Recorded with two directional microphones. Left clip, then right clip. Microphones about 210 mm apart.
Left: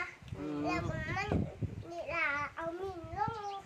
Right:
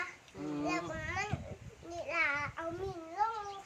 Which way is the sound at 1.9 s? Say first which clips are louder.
Right 1 dB; 5° right (ahead or behind).